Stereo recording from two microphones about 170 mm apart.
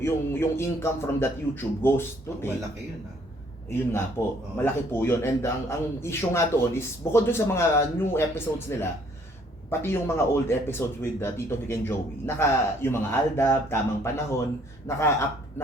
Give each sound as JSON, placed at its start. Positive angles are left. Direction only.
{"t": 0.0, "sound": "speech", "side_deg": 15}
{"t": 4.2, "sound": "speech", "side_deg": 20}